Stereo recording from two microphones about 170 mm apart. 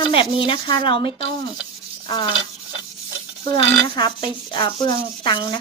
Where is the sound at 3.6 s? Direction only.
30° left (ahead or behind).